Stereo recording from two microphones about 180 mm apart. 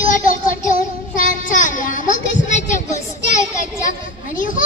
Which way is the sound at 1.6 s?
45° left (ahead or behind).